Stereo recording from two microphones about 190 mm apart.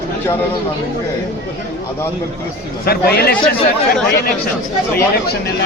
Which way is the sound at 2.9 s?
55° left (ahead or behind).